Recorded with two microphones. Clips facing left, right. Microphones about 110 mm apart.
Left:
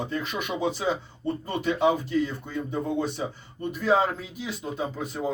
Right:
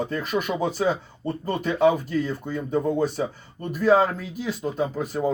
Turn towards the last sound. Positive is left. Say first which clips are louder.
# right 5 dB
turn(degrees=-45)  # may be behind; listen again after turning